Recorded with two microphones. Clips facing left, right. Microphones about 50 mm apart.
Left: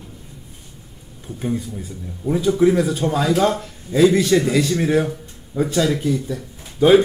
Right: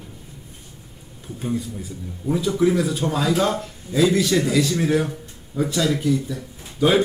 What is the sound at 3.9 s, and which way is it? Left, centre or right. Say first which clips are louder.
A man's voice: left 4 dB; left.